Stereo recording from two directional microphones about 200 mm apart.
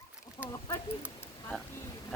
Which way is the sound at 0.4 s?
25° left (ahead or behind).